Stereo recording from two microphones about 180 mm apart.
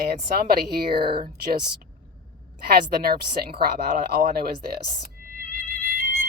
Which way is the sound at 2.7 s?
60° right (ahead or behind).